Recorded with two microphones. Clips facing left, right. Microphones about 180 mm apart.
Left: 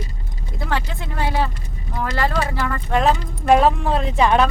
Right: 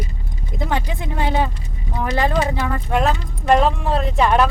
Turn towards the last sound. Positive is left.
turn(degrees=0)  # may be behind; listen again after turning